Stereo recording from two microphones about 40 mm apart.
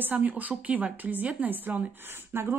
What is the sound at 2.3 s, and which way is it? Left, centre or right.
Speech, right.